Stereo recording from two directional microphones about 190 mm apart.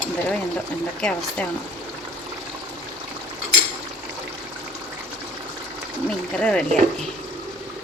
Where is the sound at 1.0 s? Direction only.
5° left (ahead or behind).